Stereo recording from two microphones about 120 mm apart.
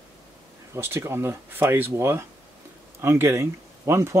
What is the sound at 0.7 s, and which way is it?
Speech, 20° right (ahead or behind).